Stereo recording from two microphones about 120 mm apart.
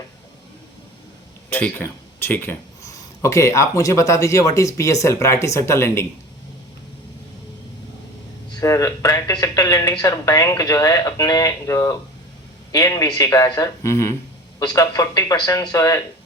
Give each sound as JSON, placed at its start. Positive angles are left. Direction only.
{"t": 1.5, "sound": "speech", "side_deg": 15}
{"t": 8.6, "sound": "speech", "side_deg": 25}
{"t": 14.6, "sound": "speech", "side_deg": 35}